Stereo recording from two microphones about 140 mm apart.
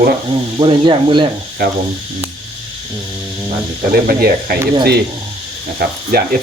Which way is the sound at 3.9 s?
90° right.